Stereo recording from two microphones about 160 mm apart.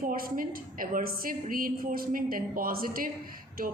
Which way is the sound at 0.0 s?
60° right (ahead or behind).